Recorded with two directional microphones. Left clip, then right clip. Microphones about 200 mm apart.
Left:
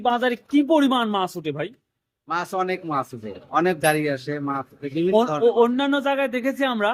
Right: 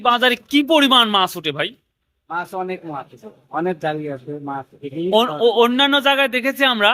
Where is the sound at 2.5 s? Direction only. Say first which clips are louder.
Left 2 dB; 20° left (ahead or behind).